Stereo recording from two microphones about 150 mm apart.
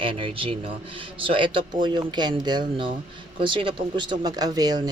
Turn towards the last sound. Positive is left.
turn(degrees=-25)  # may be behind; listen again after turning